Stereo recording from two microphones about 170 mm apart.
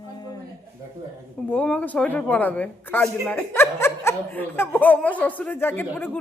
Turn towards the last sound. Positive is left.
turn(degrees=10)  # may be behind; listen again after turning